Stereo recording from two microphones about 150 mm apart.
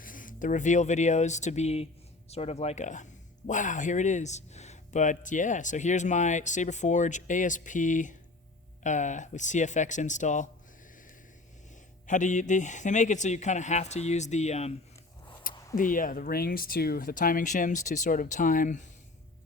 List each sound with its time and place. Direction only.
0.0 s speech: 65° left (ahead or behind)
12.0 s speech: 55° left (ahead or behind)
15.7 s speech: 60° left (ahead or behind)